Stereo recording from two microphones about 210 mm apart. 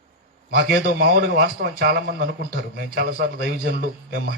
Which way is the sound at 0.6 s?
50° right (ahead or behind).